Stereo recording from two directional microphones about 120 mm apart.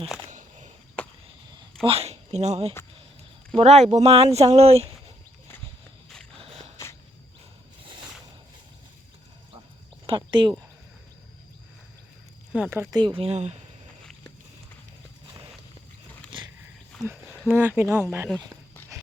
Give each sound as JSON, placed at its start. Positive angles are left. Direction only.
{"t": 0.3, "sound": "a sound", "side_deg": -85}
{"t": 1.8, "sound": "speech", "side_deg": -55}
{"t": 6.3, "sound": "a sound", "side_deg": -55}
{"t": 10.1, "sound": "speech", "side_deg": -40}
{"t": 12.5, "sound": "speech", "side_deg": -10}
{"t": 12.8, "sound": "speech", "side_deg": -35}
{"t": 13.1, "sound": "speech", "side_deg": -60}
{"t": 14.0, "sound": "a sound", "side_deg": 5}
{"t": 16.3, "sound": "wild animals", "side_deg": -45}
{"t": 17.5, "sound": "speech", "side_deg": -15}